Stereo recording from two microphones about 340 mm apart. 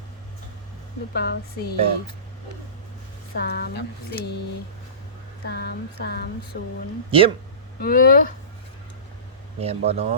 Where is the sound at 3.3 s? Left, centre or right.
Left.